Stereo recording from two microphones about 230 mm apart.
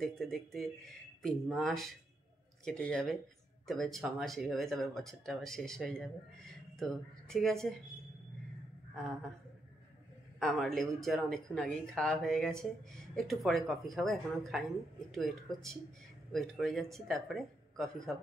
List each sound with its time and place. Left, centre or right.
0.0 s speech: centre
8.9 s speech: centre
10.4 s speech: centre